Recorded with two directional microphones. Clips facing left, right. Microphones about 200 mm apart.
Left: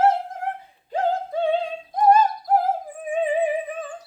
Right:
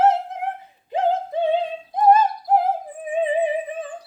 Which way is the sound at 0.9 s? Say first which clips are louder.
Right 2 dB; 20° right (ahead or behind).